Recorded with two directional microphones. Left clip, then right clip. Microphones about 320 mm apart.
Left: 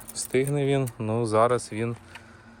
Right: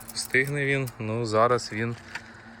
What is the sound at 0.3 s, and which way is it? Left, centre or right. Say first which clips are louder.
Speech: even; left.